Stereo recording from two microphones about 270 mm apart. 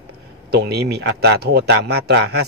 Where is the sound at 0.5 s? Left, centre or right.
Right.